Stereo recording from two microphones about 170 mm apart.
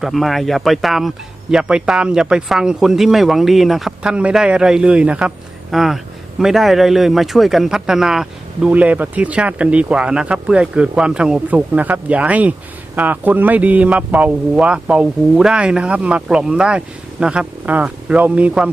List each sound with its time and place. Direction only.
0.0 s speech: centre (ahead or behind)